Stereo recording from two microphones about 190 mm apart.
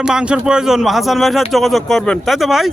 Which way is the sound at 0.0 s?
5° right (ahead or behind).